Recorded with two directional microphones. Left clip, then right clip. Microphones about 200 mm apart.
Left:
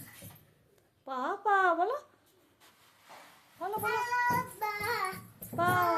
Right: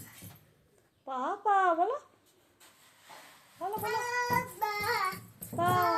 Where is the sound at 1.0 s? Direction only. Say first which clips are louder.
Even; 10° left (ahead or behind).